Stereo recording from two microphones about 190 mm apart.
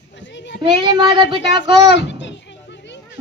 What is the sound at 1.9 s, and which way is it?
Children playing, 65° left (ahead or behind).